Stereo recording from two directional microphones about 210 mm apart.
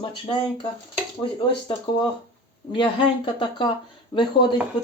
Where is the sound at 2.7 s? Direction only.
25° left (ahead or behind).